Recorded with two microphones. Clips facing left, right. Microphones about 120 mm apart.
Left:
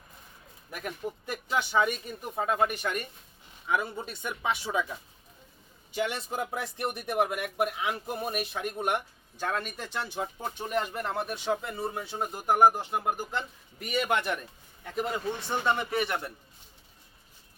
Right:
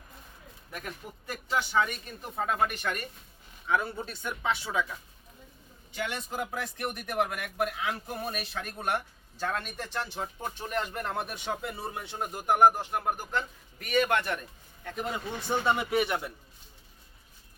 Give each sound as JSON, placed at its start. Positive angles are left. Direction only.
{"t": 1.3, "sound": "a man's voice", "side_deg": 15}
{"t": 5.9, "sound": "speech", "side_deg": 20}
{"t": 9.5, "sound": "a man's voice", "side_deg": 5}